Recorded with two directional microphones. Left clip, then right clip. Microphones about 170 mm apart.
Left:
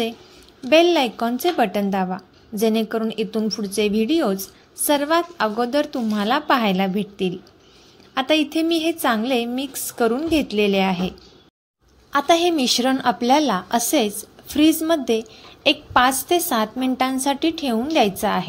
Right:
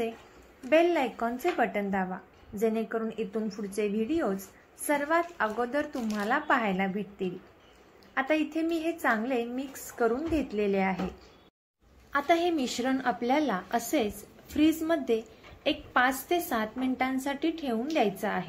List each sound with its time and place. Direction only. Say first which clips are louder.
0.7 s a woman's voice: left 9 dB; 60° left (ahead or behind)
8.1 s a woman's voice: left 9 dB; 55° left (ahead or behind)
12.1 s a woman's voice: left 9 dB; 45° left (ahead or behind)